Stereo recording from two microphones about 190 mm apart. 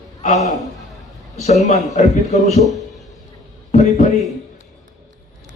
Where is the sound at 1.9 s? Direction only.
40° left (ahead or behind).